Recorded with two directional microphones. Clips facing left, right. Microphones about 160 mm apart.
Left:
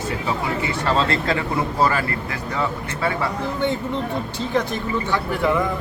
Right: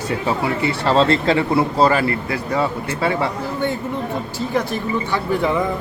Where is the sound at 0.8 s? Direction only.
35° right (ahead or behind).